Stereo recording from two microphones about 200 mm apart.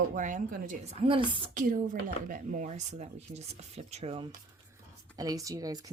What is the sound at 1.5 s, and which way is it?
Speech, 40° right (ahead or behind).